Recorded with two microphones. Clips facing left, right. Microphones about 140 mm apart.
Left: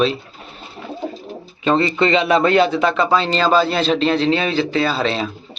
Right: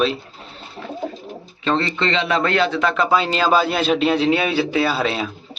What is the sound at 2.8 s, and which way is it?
A man's voice, centre (ahead or behind).